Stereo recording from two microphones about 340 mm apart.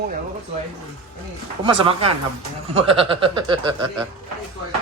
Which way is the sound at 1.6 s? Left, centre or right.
Centre.